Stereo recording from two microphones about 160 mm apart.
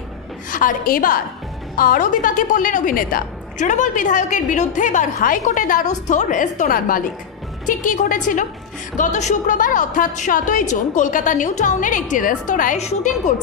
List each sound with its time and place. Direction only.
0.5 s a woman's voice: 55° left (ahead or behind)